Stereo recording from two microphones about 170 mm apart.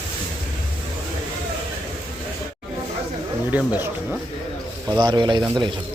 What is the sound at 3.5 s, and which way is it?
Wild animals, 10° right (ahead or behind).